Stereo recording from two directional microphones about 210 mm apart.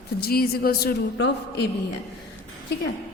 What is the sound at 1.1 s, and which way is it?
Speech, 55° left (ahead or behind).